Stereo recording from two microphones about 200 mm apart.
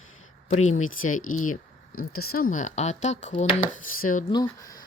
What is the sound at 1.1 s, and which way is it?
Speech, 40° left (ahead or behind).